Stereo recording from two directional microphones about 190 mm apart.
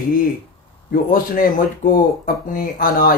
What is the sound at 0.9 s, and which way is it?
Speech, 50° left (ahead or behind).